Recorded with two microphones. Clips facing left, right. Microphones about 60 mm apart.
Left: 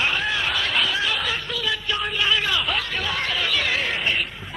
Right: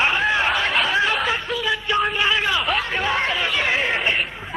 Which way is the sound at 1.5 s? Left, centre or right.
Right.